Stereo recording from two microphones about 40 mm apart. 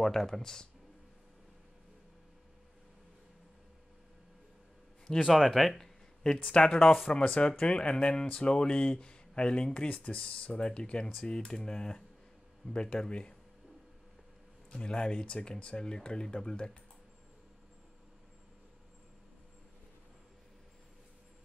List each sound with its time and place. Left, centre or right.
0.0 s speech: centre
5.2 s speech: centre
6.2 s speech: centre
14.7 s speech: left